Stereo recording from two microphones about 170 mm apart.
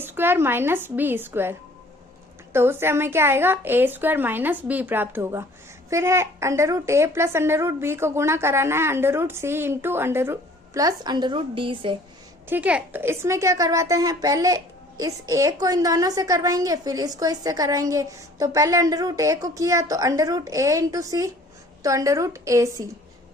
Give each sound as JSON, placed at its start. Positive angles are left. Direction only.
{"t": 0.0, "sound": "a woman's voice", "side_deg": -10}
{"t": 12.5, "sound": "a woman's voice", "side_deg": -10}